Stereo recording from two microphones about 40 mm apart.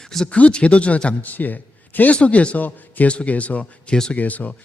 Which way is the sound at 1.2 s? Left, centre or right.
Left.